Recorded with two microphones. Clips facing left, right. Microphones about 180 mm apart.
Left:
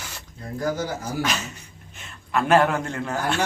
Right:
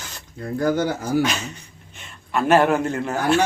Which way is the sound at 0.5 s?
60° right (ahead or behind).